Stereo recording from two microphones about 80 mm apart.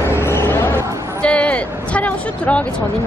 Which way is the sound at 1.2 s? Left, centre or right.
Centre.